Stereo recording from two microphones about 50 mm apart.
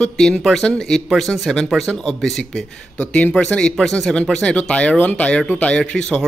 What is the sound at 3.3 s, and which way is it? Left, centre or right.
Speech, left.